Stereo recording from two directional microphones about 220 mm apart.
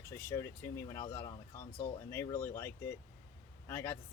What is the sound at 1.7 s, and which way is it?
Speech, 10° left (ahead or behind).